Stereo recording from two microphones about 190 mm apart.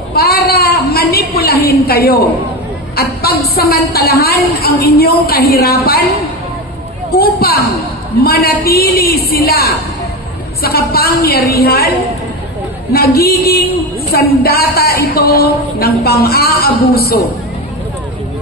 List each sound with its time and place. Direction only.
0.1 s a sound: 55° left (ahead or behind)
3.0 s a woman's voice: 55° left (ahead or behind)
7.1 s a woman's voice: 55° left (ahead or behind)
12.9 s a woman's voice: 55° left (ahead or behind)